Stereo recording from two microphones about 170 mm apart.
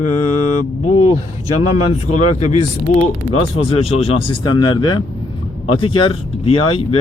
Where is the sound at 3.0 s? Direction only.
35° left (ahead or behind).